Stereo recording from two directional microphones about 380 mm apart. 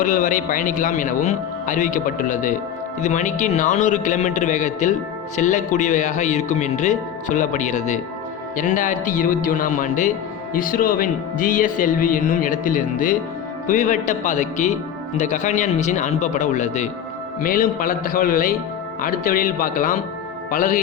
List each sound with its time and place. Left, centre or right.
0.0 s speech: centre